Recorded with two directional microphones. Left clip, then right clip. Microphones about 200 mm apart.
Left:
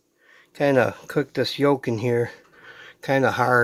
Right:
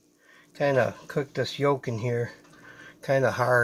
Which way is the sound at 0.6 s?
50° left (ahead or behind).